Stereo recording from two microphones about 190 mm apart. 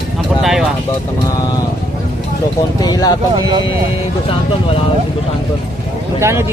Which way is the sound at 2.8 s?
20° left (ahead or behind).